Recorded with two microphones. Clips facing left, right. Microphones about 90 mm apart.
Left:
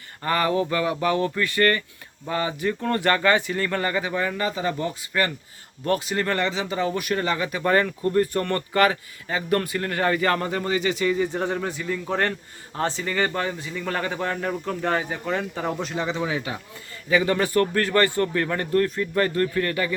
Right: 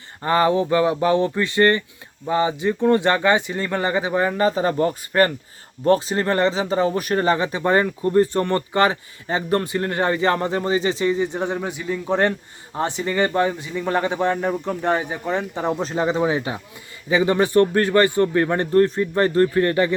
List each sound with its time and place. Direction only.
0.2 s speech: 25° right (ahead or behind)
15.8 s speech: 35° right (ahead or behind)